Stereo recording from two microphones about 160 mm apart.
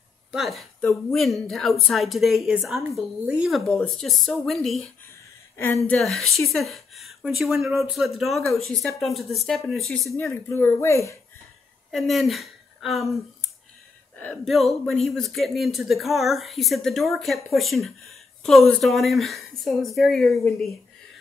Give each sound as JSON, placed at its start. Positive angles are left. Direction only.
{"t": 0.3, "sound": "a woman's voice", "side_deg": 0}
{"t": 5.6, "sound": "speech", "side_deg": 10}
{"t": 5.9, "sound": "a woman's voice", "side_deg": 0}
{"t": 10.3, "sound": "speech", "side_deg": 15}
{"t": 11.9, "sound": "a woman's voice", "side_deg": 0}